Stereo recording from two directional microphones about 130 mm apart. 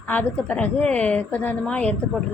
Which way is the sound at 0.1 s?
10° left (ahead or behind).